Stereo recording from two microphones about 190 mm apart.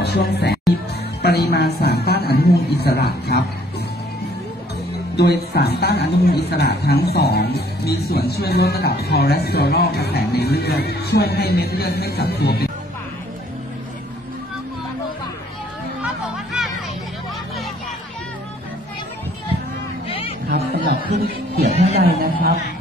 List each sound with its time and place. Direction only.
0.0 s a woman's voice: 60° left (ahead or behind)
5.1 s a woman's voice: 60° left (ahead or behind)
16.5 s hubbub: centre (ahead or behind)
20.1 s music: 30° left (ahead or behind)
20.4 s music: 55° right (ahead or behind)
22.0 s a man's voice: 55° right (ahead or behind)